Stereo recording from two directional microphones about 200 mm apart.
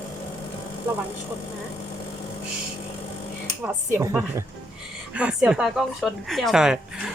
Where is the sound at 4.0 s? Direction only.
10° right (ahead or behind).